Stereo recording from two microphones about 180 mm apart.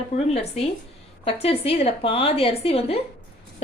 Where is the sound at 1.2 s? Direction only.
35° left (ahead or behind).